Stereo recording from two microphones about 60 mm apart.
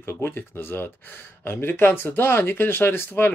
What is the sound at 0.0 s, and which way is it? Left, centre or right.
Speech, left.